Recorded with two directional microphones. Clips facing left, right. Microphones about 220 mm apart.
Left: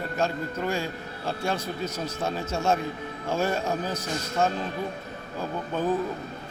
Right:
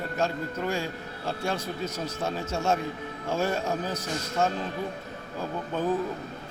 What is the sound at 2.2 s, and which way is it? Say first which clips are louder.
A man's voice: left 2 dB; 25° left (ahead or behind).